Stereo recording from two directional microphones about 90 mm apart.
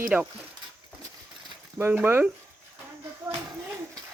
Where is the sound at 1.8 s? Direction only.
25° right (ahead or behind).